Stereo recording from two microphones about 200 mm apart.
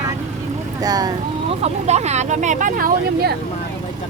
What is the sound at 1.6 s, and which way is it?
Speech, 35° right (ahead or behind).